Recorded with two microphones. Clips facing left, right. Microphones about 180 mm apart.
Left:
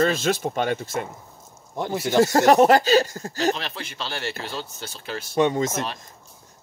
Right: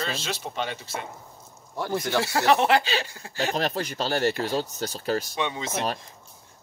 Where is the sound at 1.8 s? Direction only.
20° left (ahead or behind).